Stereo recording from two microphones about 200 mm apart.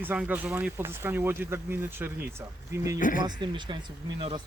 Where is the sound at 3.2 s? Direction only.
25° right (ahead or behind).